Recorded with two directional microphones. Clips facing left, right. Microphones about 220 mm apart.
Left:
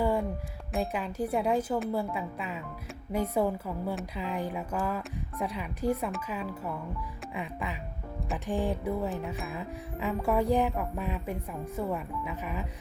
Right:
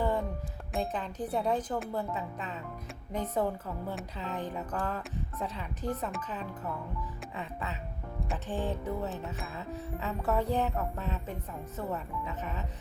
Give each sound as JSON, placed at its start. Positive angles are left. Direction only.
{"t": 0.0, "sound": "music", "side_deg": 10}
{"t": 0.7, "sound": "a woman's voice", "side_deg": 10}